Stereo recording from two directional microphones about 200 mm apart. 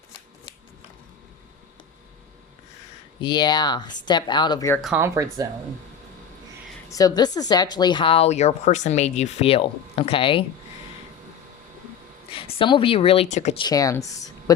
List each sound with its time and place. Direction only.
3.2 s speech: 20° left (ahead or behind)
4.9 s speech: 15° right (ahead or behind)
6.9 s speech: 20° left (ahead or behind)
12.5 s speech: 25° left (ahead or behind)
13.6 s speech: 20° left (ahead or behind)